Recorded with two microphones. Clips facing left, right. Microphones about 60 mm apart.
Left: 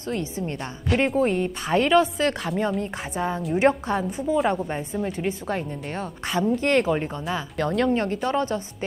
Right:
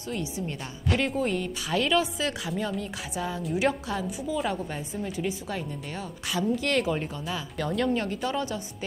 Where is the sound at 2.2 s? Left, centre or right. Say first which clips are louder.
Left 6 dB; left.